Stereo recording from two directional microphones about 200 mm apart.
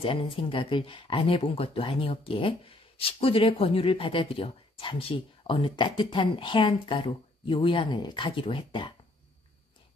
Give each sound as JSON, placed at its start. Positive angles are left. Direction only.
{"t": 0.0, "sound": "speech", "side_deg": 25}